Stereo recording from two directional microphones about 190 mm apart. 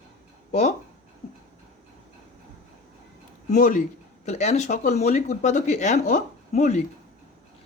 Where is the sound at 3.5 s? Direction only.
40° left (ahead or behind).